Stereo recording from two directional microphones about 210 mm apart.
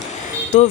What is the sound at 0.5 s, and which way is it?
Speech, 35° left (ahead or behind).